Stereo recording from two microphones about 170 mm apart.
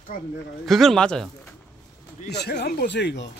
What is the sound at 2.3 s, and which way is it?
Speech, 75° left (ahead or behind).